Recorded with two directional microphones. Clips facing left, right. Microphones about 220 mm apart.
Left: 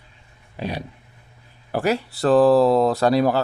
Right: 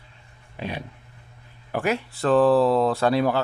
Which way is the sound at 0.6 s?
40° left (ahead or behind).